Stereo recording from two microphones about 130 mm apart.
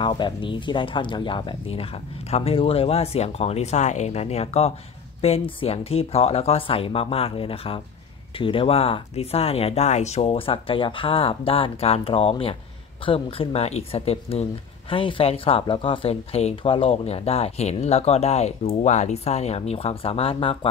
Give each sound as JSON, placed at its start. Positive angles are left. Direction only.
{"t": 0.0, "sound": "speech", "side_deg": 40}